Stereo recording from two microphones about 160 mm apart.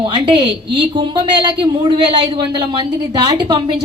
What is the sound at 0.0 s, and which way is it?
A woman's voice, 30° right (ahead or behind).